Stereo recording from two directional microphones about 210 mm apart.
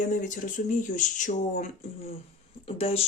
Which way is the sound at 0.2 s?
40° left (ahead or behind).